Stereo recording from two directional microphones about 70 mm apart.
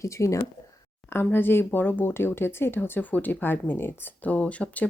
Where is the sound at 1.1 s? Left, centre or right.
Left.